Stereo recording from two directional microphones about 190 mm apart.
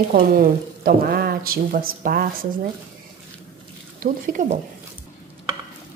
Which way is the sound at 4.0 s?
45° right (ahead or behind).